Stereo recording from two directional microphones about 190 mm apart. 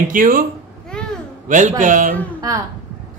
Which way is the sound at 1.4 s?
40° right (ahead or behind).